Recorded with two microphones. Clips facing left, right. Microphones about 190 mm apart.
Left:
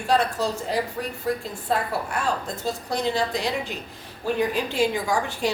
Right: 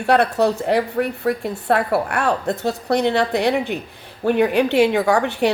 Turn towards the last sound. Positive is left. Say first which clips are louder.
# right 7 dB
turn(degrees=-65)  # may be behind; listen again after turning